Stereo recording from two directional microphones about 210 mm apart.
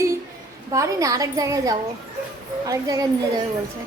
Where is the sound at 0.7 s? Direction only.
15° right (ahead or behind).